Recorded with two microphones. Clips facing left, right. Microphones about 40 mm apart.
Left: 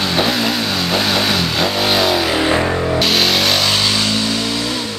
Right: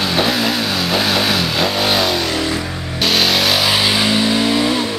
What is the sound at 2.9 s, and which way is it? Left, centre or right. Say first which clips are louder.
Vehicle: right 3 dB; centre.